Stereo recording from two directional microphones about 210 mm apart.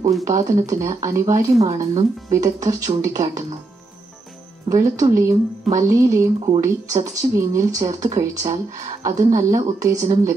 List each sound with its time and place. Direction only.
0.2 s speech: 15° right (ahead or behind)
4.6 s speech: 15° right (ahead or behind)